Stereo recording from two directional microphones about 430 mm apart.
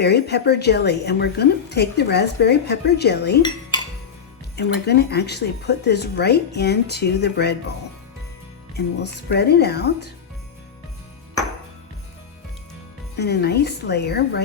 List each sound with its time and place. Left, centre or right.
0.0 s a woman's voice: left
4.5 s a woman's voice: left
9.3 s a woman's voice: left
13.1 s a woman's voice: left